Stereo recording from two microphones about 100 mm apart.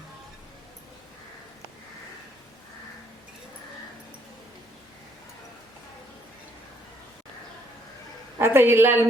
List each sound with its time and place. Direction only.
8.4 s a woman's voice: 25° right (ahead or behind)